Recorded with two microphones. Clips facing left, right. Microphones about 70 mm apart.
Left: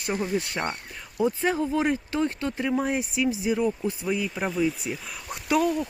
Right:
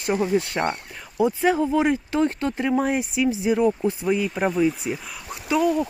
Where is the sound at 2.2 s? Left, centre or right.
Right.